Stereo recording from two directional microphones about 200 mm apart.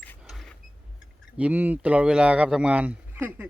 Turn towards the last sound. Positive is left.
turn(degrees=-10)  # may be behind; listen again after turning